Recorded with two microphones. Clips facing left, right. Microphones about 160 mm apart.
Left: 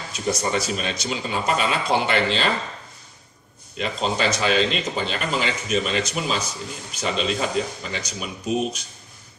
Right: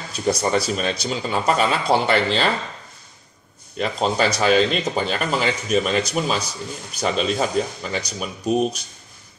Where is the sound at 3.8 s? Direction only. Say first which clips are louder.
Right 3 dB; 45° right (ahead or behind).